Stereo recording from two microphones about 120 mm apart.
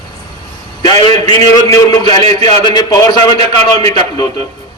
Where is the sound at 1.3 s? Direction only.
35° left (ahead or behind).